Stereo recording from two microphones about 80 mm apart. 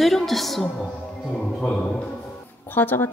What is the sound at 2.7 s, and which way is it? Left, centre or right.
Speech, left.